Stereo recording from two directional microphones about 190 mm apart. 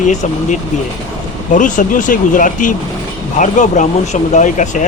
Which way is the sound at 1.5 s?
40° left (ahead or behind).